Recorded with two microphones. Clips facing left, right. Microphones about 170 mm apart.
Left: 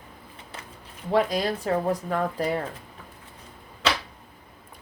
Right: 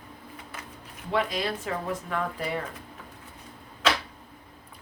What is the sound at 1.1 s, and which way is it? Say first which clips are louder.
Speech: left 5 dB; 40° left (ahead or behind).